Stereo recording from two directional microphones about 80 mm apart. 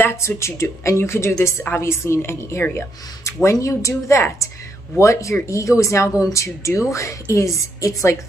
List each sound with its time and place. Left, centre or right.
0.0 s a sound: left
0.4 s a woman's voice: left
3.5 s a woman's voice: left